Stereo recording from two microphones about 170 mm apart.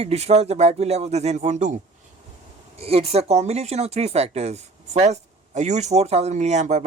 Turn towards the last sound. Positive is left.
turn(degrees=-45)  # may be behind; listen again after turning